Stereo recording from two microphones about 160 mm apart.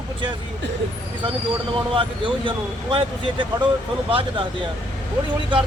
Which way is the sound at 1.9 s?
30° right (ahead or behind).